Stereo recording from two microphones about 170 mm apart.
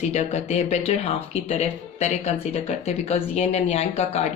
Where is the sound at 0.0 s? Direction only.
40° left (ahead or behind).